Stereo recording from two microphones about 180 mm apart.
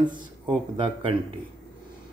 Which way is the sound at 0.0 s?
25° right (ahead or behind).